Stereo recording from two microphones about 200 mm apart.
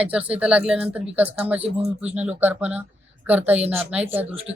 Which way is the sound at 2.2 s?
10° right (ahead or behind).